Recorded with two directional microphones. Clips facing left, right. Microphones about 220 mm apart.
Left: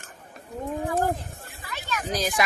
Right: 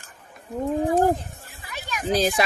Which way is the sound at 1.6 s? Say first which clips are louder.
Left 1 dB; 15° right (ahead or behind).